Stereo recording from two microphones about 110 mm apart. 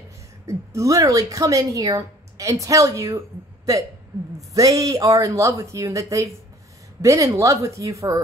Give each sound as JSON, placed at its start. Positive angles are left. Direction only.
{"t": 0.5, "sound": "a woman's voice", "side_deg": -30}